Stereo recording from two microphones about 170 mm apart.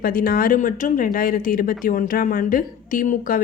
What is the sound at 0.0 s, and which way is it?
A woman's voice, 55° left (ahead or behind).